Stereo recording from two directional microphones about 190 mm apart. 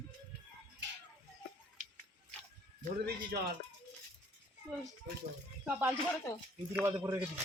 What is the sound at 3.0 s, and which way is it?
Speech, 55° right (ahead or behind).